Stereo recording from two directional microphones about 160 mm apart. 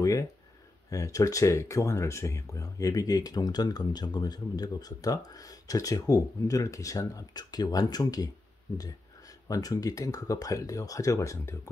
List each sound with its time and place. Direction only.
0.8 s speech: 20° left (ahead or behind)
9.5 s speech: 20° left (ahead or behind)